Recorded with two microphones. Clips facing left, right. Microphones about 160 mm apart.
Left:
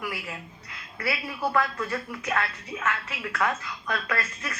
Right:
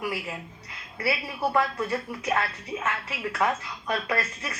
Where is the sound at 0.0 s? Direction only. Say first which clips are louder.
Right 3 dB; 20° right (ahead or behind).